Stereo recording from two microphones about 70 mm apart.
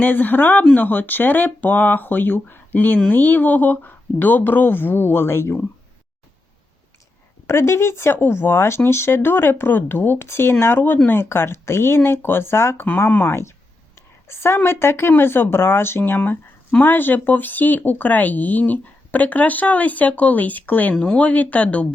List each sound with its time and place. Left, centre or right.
0.0 s speech: left
7.4 s speech: left